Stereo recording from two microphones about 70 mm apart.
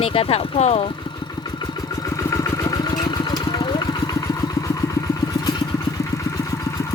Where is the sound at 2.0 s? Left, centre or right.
Left.